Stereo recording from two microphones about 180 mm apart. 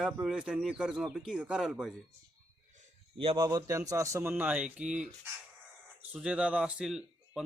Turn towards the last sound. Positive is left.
turn(degrees=0)  # may be behind; listen again after turning